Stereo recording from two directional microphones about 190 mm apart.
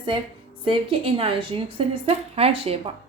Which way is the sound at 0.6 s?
30° right (ahead or behind).